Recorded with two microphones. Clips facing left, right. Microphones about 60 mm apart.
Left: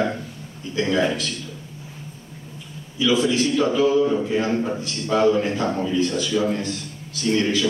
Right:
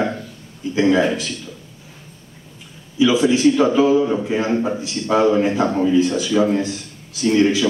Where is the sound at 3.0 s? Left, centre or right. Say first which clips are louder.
Right 5 dB; centre.